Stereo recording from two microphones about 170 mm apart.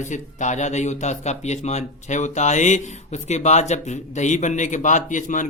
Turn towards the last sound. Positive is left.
turn(degrees=50)  # may be behind; listen again after turning